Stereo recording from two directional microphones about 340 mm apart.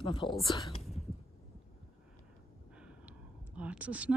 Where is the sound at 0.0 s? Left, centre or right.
Centre.